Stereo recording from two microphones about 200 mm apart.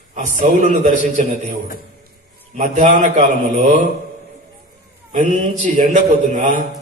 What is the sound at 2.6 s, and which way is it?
A man's voice, 40° right (ahead or behind).